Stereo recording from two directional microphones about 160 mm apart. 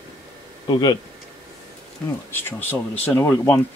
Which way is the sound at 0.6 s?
25° left (ahead or behind).